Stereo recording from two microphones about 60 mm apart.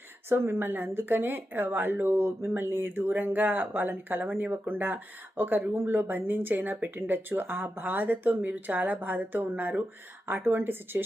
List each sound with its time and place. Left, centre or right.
0.3 s speech: right